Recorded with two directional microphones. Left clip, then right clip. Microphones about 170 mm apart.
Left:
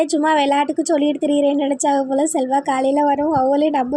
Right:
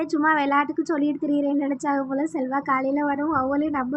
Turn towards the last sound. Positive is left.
turn(degrees=25)  # may be behind; listen again after turning